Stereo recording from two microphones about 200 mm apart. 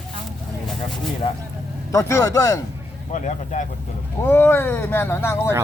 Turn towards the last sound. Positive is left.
turn(degrees=10)  # may be behind; listen again after turning